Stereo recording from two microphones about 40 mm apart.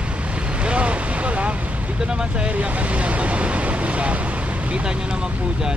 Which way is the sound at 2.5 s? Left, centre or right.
Right.